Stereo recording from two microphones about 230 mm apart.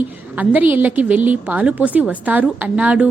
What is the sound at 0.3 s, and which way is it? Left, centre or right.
A woman's voice, centre.